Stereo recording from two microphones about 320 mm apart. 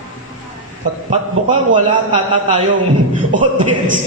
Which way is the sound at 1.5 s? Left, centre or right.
Right.